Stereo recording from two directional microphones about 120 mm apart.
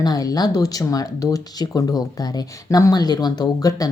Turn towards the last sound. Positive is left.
turn(degrees=30)  # may be behind; listen again after turning